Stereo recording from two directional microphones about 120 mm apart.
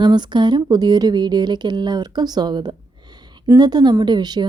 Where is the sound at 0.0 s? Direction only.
40° right (ahead or behind).